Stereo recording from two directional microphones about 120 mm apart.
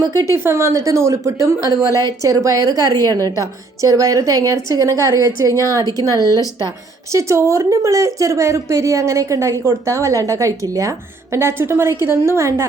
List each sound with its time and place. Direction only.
0.1 s speech: 25° left (ahead or behind)
0.4 s a woman's voice: 25° right (ahead or behind)